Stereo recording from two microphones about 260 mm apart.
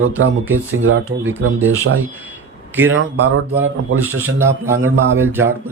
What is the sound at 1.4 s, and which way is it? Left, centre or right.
Speech, right.